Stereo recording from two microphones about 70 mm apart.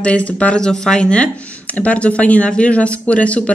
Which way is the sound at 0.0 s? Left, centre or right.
Centre.